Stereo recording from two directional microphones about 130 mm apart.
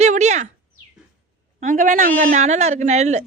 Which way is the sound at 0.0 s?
60° right (ahead or behind).